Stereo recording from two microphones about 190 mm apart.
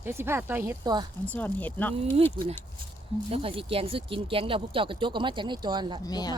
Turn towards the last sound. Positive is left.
turn(degrees=20)  # may be behind; listen again after turning